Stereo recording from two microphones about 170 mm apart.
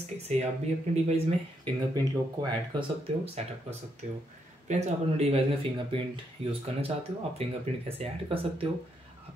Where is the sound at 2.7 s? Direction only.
35° right (ahead or behind).